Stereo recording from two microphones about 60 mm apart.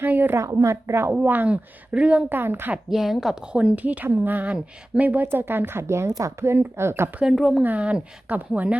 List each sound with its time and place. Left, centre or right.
0.0 s speech: right
0.3 s speech: right
1.2 s speech: right
2.3 s speech: right
2.9 s speech: centre
3.5 s speech: centre
4.0 s speech: right
5.9 s speech: right
7.6 s speech: right